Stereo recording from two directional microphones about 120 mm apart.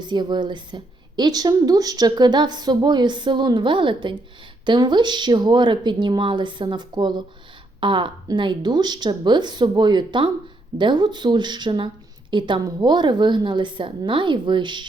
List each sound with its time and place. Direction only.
0.0 s a woman's voice: 35° right (ahead or behind)